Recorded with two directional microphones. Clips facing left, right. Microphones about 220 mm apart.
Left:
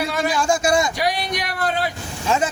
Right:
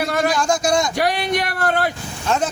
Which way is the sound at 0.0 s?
50° right (ahead or behind).